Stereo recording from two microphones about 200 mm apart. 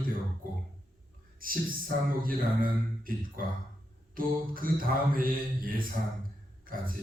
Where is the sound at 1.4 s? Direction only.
45° right (ahead or behind).